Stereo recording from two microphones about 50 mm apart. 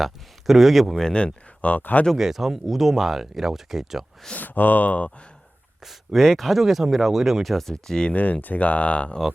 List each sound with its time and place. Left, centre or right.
0.0 s speech: centre
1.0 s speech: left
1.7 s speech: left
2.1 s speech: centre
4.4 s speech: left
5.8 s speech: centre
8.1 s speech: left